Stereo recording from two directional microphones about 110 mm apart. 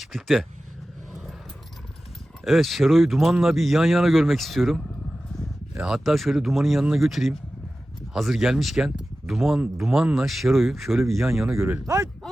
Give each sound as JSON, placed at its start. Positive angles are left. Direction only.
{"t": 0.0, "sound": "speech", "side_deg": 0}
{"t": 2.4, "sound": "speech", "side_deg": 0}
{"t": 5.8, "sound": "speech", "side_deg": -5}
{"t": 11.5, "sound": "speech", "side_deg": -25}